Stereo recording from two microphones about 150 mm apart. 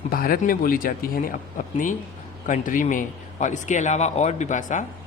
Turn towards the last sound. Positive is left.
turn(degrees=55)  # may be behind; listen again after turning